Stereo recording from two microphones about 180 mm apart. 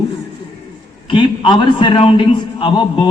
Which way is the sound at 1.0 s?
25° left (ahead or behind).